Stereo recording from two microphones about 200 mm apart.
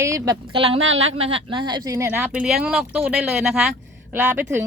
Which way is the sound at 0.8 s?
80° right.